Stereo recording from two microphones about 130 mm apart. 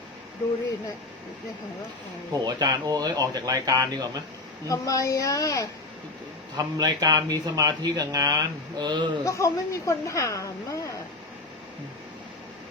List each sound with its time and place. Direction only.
2.4 s speech: 35° right (ahead or behind)
4.7 s a woman's voice: 25° left (ahead or behind)
6.6 s speech: 30° right (ahead or behind)
9.2 s a woman's voice: 25° left (ahead or behind)